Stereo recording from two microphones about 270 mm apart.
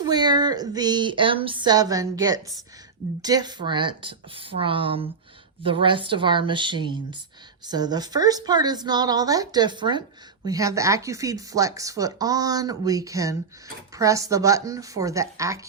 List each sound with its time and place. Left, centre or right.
0.0 s speech: centre